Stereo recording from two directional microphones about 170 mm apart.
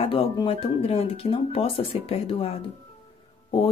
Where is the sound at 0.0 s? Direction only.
35° left (ahead or behind).